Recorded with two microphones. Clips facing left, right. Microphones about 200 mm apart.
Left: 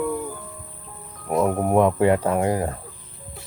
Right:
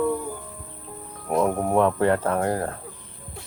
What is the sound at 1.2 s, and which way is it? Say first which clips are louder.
Speech: left 1 dB; 5° left (ahead or behind).